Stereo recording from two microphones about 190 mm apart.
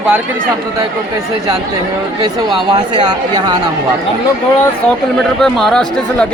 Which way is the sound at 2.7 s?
25° right (ahead or behind).